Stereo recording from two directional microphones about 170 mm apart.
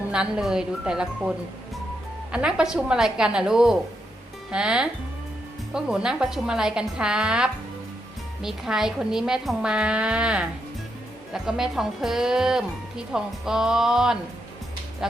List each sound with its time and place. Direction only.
0.1 s speech: 5° right (ahead or behind)
2.3 s speech: 5° right (ahead or behind)